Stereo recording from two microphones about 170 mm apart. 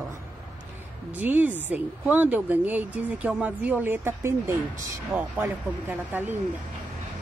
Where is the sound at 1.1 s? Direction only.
10° right (ahead or behind).